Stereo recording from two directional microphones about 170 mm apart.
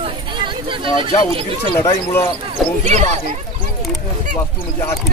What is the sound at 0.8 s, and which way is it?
Speech, 30° right (ahead or behind).